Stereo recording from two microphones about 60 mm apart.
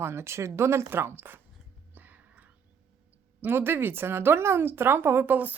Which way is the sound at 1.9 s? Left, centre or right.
Right.